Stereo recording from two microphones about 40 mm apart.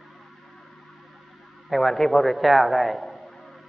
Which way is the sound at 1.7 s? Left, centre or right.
Centre.